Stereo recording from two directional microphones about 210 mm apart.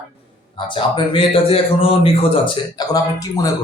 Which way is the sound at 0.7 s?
25° left (ahead or behind).